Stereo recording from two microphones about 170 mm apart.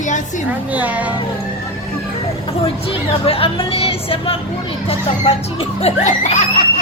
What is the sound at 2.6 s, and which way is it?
Speech, 35° left (ahead or behind).